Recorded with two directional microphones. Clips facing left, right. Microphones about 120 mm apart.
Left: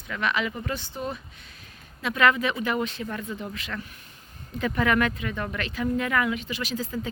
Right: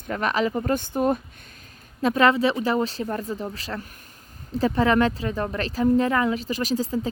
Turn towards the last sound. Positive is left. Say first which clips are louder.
# right 6 dB
turn(degrees=-35)  # may be behind; listen again after turning